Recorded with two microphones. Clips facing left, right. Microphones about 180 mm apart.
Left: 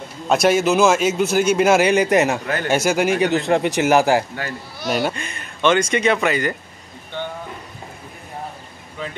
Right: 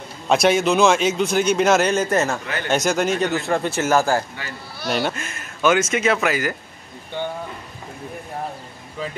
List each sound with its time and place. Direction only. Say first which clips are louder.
0.3 s a man's voice: left 1 dB; 5° left (ahead or behind)
4.8 s a man's voice: left 1 dB; centre (ahead or behind)